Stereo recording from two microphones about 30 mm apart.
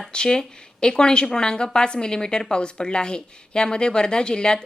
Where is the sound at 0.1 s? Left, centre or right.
Left.